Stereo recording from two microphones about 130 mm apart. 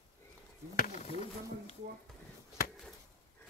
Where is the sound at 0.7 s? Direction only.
90° left.